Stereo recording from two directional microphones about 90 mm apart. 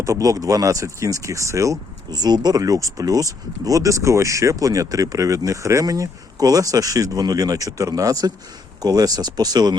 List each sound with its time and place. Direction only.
0.0 s speech: 40° right (ahead or behind)
2.0 s speech: 50° right (ahead or behind)